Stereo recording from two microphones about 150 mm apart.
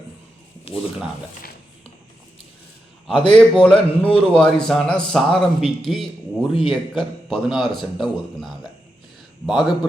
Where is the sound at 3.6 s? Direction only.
5° left (ahead or behind).